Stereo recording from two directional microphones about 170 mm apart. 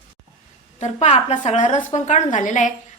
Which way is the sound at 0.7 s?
40° left (ahead or behind).